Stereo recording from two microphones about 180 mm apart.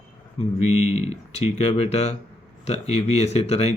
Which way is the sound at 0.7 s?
35° left (ahead or behind).